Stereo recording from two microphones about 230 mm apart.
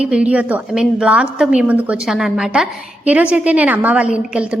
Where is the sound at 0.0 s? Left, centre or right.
Centre.